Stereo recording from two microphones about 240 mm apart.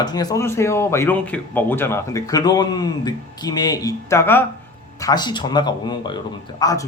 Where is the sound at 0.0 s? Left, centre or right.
Centre.